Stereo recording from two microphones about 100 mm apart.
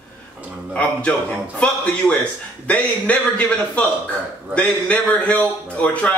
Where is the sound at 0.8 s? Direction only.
10° left (ahead or behind).